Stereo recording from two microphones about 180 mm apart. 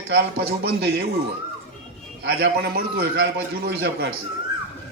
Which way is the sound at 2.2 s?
60° right (ahead or behind).